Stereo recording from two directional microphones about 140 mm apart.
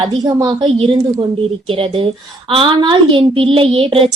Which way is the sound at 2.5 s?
40° right (ahead or behind).